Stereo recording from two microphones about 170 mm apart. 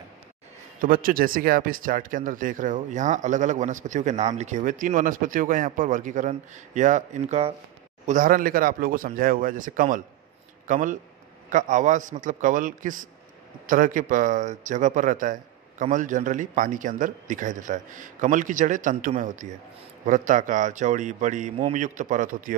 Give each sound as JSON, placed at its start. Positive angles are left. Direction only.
{"t": 0.7, "sound": "speech", "side_deg": -55}
{"t": 8.1, "sound": "a man's voice", "side_deg": -55}